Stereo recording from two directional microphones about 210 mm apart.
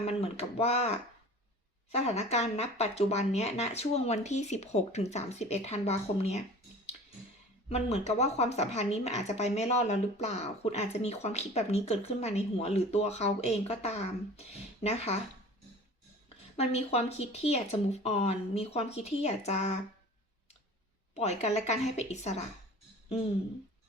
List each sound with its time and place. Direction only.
0.0 s a woman's voice: 30° left (ahead or behind)
7.7 s a woman's voice: 30° left (ahead or behind)
16.6 s a woman's voice: 30° left (ahead or behind)
21.2 s a woman's voice: 30° left (ahead or behind)